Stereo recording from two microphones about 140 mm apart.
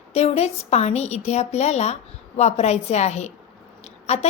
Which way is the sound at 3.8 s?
50° left (ahead or behind).